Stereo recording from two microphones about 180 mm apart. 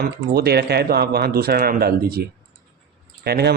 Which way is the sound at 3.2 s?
60° right (ahead or behind).